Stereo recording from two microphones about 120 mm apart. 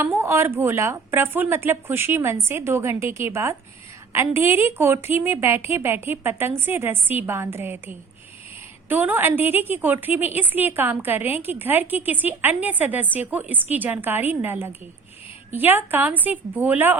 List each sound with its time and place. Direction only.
0.0 s a woman's voice: 20° right (ahead or behind)